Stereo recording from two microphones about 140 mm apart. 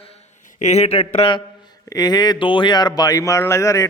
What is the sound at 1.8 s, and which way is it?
A man's voice, 25° left (ahead or behind).